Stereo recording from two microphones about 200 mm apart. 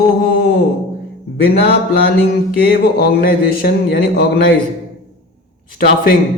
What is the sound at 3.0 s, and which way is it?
Speech, 50° left (ahead or behind).